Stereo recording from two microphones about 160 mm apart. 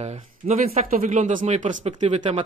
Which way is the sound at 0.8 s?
55° right (ahead or behind).